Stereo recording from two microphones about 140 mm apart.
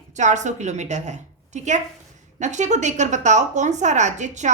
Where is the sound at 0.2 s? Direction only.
55° right (ahead or behind).